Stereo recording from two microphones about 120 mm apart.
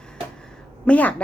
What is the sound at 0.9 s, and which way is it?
Speech, 15° left (ahead or behind).